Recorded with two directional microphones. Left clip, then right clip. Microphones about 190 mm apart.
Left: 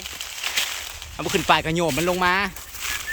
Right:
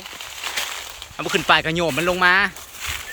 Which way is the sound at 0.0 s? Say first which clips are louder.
Left 1 dB; 30° right (ahead or behind).